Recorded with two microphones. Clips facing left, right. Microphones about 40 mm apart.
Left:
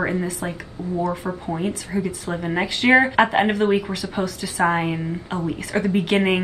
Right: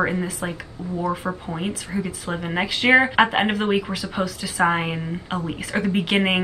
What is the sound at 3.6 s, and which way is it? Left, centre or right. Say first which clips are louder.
Speech: left 2 dB; right.